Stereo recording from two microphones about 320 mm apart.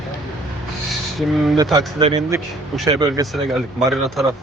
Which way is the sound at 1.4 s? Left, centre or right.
Centre.